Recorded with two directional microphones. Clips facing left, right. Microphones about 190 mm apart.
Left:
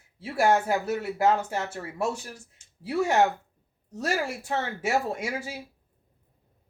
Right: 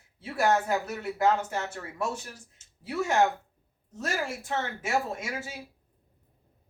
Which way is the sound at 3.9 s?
35° left (ahead or behind).